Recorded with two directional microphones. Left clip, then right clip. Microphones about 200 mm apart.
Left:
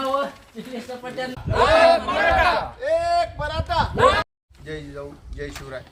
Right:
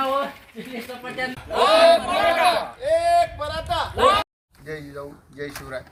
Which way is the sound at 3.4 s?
30° left (ahead or behind).